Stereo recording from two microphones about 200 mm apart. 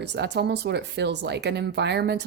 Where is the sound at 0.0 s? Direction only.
60° right (ahead or behind).